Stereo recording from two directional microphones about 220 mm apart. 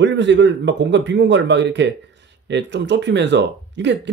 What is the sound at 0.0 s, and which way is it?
Speech, 55° right (ahead or behind).